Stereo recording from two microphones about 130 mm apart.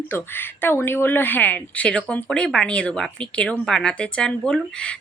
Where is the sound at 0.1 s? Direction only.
15° left (ahead or behind).